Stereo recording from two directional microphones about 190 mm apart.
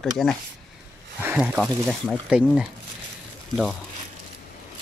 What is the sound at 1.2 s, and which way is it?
Speech, 10° right (ahead or behind).